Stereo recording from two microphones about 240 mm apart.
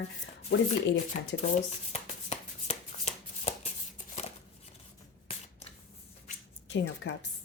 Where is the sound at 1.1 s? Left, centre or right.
Left.